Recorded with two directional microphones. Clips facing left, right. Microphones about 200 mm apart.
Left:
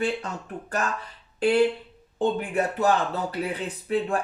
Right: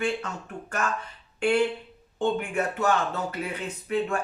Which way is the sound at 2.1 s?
35° left (ahead or behind).